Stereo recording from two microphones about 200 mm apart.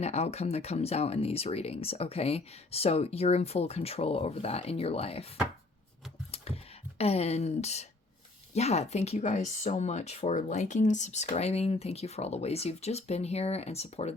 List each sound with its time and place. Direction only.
0.0 s speech: 30° left (ahead or behind)
7.0 s speech: 30° left (ahead or behind)